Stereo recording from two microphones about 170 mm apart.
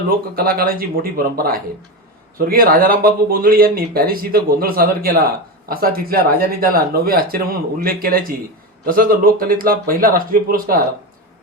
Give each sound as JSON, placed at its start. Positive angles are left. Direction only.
{"t": 0.3, "sound": "speech", "side_deg": -60}